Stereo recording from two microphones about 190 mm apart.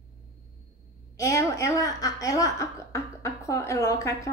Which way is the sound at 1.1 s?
15° left (ahead or behind).